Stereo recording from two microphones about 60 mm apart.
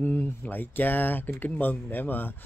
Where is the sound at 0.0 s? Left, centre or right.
Left.